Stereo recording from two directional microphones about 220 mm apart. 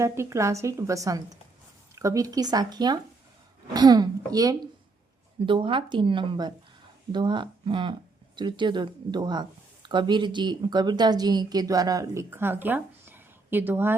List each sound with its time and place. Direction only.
0.0 s speech: 15° right (ahead or behind)